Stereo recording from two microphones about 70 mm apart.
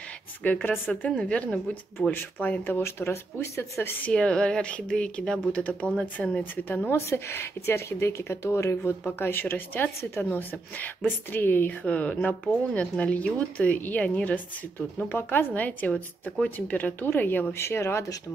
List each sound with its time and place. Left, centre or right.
0.7 s a woman's voice: left
2.8 s speech: left
3.8 s a woman's voice: left
4.1 s a woman's voice: centre
7.1 s a woman's voice: left; by 14.4 s centre
15.0 s a woman's voice: left
17.5 s speech: left